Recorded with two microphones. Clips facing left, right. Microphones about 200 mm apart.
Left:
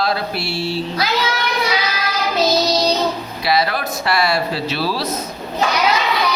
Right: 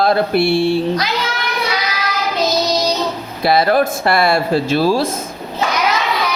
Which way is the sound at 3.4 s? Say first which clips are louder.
Right 6 dB; 50° right (ahead or behind).